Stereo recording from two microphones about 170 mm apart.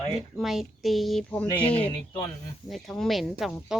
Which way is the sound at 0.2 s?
Centre (ahead or behind).